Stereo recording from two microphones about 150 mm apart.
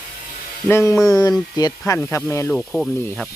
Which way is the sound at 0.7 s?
20° left (ahead or behind).